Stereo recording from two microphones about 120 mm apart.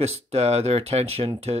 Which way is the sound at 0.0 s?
60° right (ahead or behind).